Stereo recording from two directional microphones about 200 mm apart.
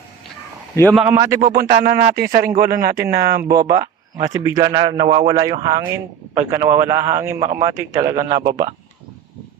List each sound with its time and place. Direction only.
1.0 s speech: 15° right (ahead or behind)
1.5 s speech: 50° right (ahead or behind)
4.2 s a man's voice: 15° right (ahead or behind)